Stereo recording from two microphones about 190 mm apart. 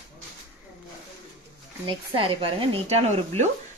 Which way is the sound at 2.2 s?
30° right (ahead or behind).